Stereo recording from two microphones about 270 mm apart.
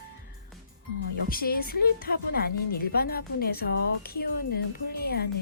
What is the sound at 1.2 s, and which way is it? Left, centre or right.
A woman's voice, left.